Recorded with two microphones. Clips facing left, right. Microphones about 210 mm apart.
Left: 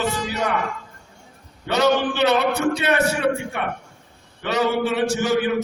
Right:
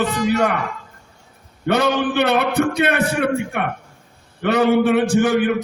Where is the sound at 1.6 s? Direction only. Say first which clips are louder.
Right 1 dB; 55° right (ahead or behind).